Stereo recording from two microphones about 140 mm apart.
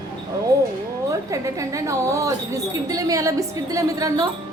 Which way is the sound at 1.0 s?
20° right (ahead or behind).